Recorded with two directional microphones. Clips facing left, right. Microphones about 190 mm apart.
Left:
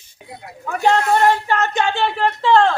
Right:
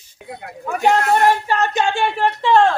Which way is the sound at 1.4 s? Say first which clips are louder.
Right 1 dB; 15° right (ahead or behind).